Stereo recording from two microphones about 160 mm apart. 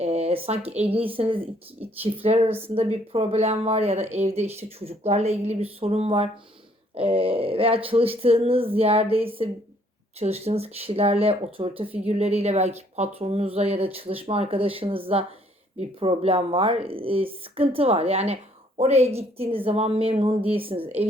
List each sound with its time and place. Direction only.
0.0 s speech: 40° right (ahead or behind)
20.8 s a woman's voice: 10° right (ahead or behind)